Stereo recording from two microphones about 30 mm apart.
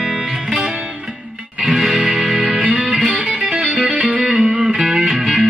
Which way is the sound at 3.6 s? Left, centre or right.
Right.